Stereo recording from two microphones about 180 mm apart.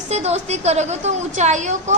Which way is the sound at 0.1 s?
35° right (ahead or behind).